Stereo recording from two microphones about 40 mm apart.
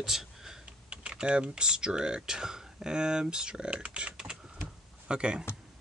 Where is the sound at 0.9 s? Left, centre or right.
Right.